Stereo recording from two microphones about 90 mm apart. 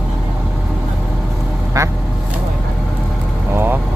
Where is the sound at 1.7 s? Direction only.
35° right (ahead or behind).